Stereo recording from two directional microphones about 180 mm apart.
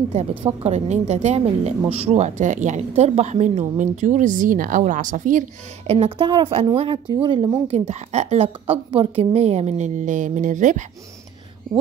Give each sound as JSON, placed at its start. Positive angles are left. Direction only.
{"t": 0.6, "sound": "speech", "side_deg": -35}
{"t": 5.9, "sound": "speech", "side_deg": -35}
{"t": 7.6, "sound": "speech", "side_deg": -40}